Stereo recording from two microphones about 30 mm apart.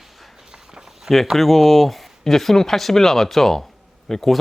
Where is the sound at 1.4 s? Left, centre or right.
Centre.